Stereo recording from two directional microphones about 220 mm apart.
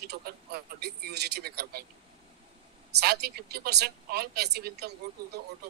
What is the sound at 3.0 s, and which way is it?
A man's voice, 45° right (ahead or behind).